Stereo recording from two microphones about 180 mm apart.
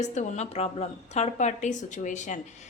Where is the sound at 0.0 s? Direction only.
40° left (ahead or behind).